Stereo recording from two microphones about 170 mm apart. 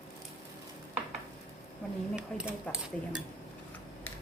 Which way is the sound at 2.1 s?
5° right (ahead or behind).